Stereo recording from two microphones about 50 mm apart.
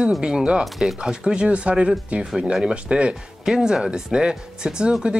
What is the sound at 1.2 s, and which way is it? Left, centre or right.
Speech, right.